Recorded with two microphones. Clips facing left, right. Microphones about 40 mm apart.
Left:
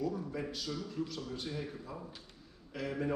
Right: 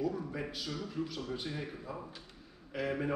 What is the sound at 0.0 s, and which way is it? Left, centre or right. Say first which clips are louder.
A man's voice: right 1 dB; centre.